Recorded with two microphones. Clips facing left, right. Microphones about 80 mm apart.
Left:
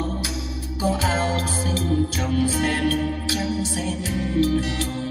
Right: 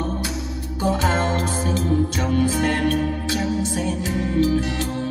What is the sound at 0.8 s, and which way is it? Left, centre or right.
Music, centre.